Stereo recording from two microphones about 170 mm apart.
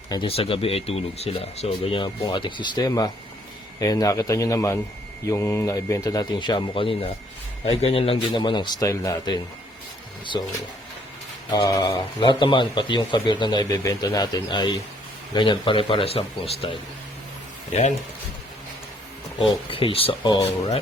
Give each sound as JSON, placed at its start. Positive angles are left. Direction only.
{"t": 0.1, "sound": "a man's voice", "side_deg": 30}
{"t": 11.5, "sound": "a man's voice", "side_deg": 20}
{"t": 17.7, "sound": "speech", "side_deg": 40}
{"t": 19.7, "sound": "speech", "side_deg": 35}